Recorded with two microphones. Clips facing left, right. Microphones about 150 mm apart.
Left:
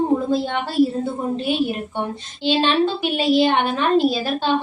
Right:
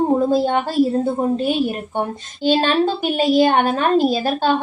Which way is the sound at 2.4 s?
45° right (ahead or behind).